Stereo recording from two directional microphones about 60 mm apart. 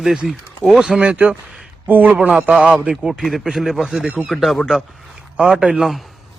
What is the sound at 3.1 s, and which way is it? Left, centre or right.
Speech, centre.